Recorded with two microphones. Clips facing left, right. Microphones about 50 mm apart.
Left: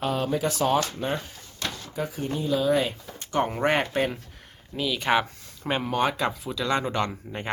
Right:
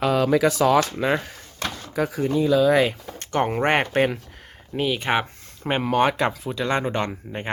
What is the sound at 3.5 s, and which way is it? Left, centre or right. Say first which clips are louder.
Speech: right 3 dB; right.